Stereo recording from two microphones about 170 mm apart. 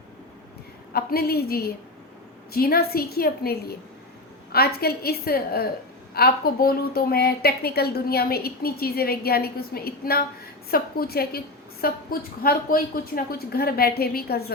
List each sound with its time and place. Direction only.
0.9 s a woman's voice: 65° left (ahead or behind)